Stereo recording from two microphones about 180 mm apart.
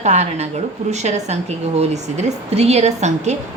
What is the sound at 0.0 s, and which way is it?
A woman's voice, 40° right (ahead or behind).